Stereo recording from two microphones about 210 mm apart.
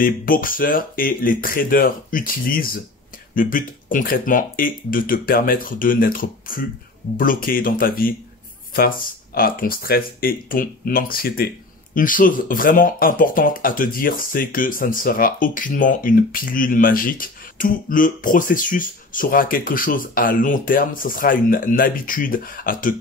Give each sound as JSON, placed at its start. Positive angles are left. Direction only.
{"t": 0.0, "sound": "speech", "side_deg": 40}